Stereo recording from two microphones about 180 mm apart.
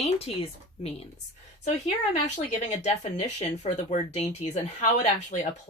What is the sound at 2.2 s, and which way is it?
Speech, 40° left (ahead or behind).